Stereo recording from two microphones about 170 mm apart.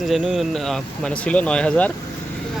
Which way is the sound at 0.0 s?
Centre (ahead or behind).